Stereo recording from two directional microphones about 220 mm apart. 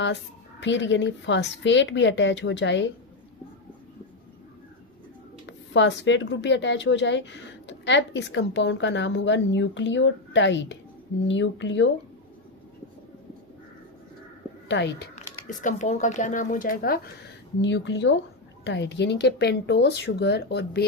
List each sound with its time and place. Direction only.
0.6 s a woman's voice: 55° left (ahead or behind)
5.5 s a woman's voice: 55° left (ahead or behind)
14.7 s speech: 55° left (ahead or behind)
15.1 s speech: 35° left (ahead or behind)
17.6 s a woman's voice: 55° left (ahead or behind)